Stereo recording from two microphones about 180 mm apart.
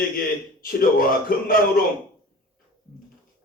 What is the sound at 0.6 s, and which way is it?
A man's voice, 50° left (ahead or behind).